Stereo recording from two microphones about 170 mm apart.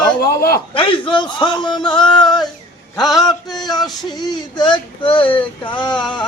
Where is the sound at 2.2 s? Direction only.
25° left (ahead or behind).